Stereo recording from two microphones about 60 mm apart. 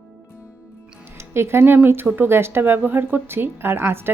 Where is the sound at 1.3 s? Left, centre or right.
Right.